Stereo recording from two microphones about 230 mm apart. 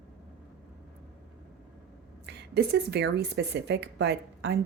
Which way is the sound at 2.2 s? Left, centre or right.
Right.